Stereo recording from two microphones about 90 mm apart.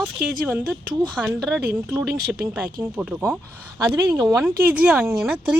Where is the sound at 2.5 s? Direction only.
15° right (ahead or behind).